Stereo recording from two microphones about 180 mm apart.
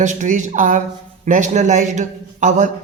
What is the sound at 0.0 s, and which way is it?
A man's voice, 40° right (ahead or behind).